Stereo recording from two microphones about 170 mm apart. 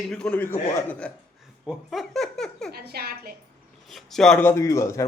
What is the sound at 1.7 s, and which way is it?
Giggle, centre (ahead or behind).